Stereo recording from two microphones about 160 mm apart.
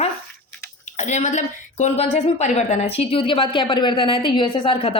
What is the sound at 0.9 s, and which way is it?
A woman's voice, 45° left (ahead or behind).